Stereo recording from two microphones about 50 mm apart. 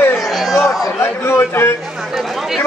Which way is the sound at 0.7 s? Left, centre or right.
Left.